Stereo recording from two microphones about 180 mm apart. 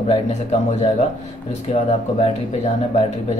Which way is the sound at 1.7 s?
40° left (ahead or behind).